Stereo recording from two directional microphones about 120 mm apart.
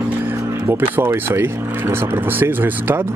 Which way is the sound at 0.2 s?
20° right (ahead or behind).